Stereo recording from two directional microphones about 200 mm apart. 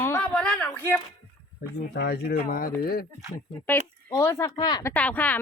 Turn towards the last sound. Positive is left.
turn(degrees=10)  # may be behind; listen again after turning